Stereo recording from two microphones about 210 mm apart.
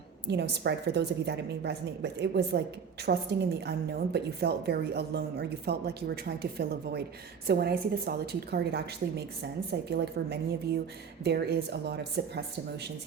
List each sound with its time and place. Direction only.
0.3 s a woman's voice: 55° right (ahead or behind)